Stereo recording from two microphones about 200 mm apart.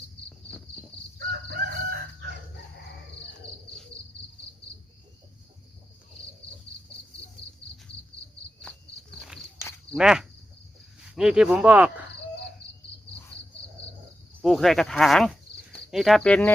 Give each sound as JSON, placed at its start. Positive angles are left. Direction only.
{"t": 1.3, "sound": "crowing", "side_deg": -50}
{"t": 9.2, "sound": "walk", "side_deg": 0}
{"t": 9.9, "sound": "speech", "side_deg": -5}
{"t": 14.4, "sound": "speech", "side_deg": 0}